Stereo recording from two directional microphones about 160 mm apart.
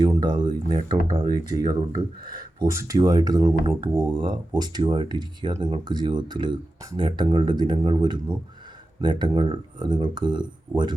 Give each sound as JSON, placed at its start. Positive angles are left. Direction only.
{"t": 0.0, "sound": "speech", "side_deg": -25}